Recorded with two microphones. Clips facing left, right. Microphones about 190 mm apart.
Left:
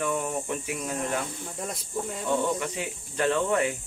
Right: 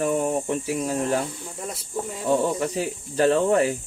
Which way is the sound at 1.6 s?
Centre (ahead or behind).